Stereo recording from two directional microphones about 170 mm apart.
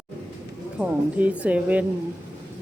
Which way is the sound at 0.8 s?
10° right (ahead or behind).